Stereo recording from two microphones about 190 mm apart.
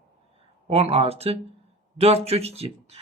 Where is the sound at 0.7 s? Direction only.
30° right (ahead or behind).